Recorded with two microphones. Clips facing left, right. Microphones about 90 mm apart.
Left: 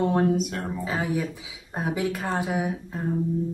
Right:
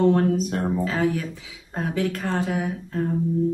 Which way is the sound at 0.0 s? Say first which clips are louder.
Right 3 dB; 15° left (ahead or behind).